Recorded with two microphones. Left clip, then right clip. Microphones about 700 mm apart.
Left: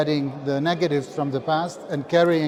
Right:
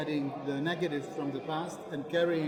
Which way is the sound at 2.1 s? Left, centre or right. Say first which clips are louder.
Left 11 dB; left.